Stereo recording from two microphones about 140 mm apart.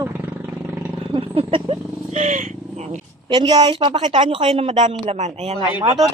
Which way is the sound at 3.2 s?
35° right (ahead or behind).